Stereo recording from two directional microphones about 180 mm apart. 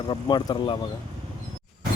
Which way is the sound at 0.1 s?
25° left (ahead or behind).